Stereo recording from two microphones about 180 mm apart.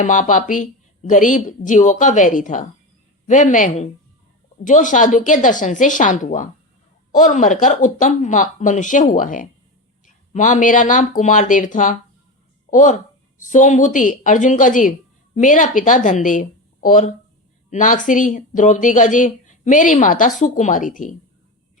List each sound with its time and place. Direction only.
0.0 s speech: 45° left (ahead or behind)